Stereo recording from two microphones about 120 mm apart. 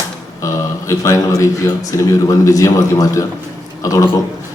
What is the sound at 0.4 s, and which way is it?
A man's voice, 25° left (ahead or behind).